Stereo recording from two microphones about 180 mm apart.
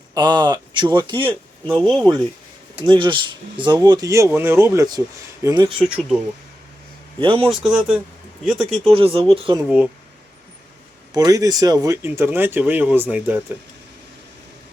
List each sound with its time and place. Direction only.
0.1 s speech: 25° right (ahead or behind)
1.6 s speech: 5° left (ahead or behind)
2.9 s speech: 25° right (ahead or behind)
5.8 s speech: centre (ahead or behind)
7.2 s a man's voice: 30° right (ahead or behind)
7.7 s speech: 5° right (ahead or behind)
8.9 s a man's voice: 30° right (ahead or behind)
9.6 s speech: 5° right (ahead or behind)
11.1 s speech: 20° right (ahead or behind)